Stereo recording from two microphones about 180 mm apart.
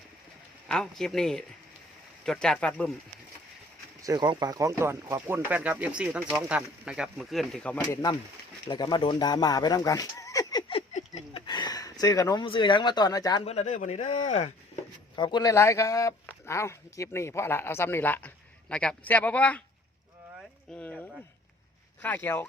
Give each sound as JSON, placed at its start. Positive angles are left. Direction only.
{"t": 0.7, "sound": "speech", "side_deg": 5}
{"t": 4.0, "sound": "speech", "side_deg": -20}
{"t": 8.6, "sound": "speech", "side_deg": 25}
{"t": 10.7, "sound": "a sound", "side_deg": 35}
{"t": 11.4, "sound": "speech", "side_deg": 25}
{"t": 13.4, "sound": "speech", "side_deg": 35}
{"t": 15.1, "sound": "a man's voice", "side_deg": 25}
{"t": 20.7, "sound": "a sound", "side_deg": 5}
{"t": 22.0, "sound": "speech", "side_deg": 10}